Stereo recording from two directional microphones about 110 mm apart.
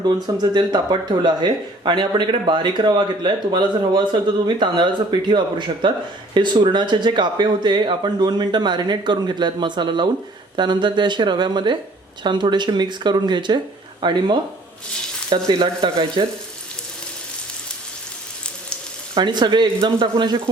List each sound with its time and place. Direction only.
0.5 s speech: 40° right (ahead or behind)
15.4 s speech: 50° right (ahead or behind)
19.1 s speech: 45° right (ahead or behind)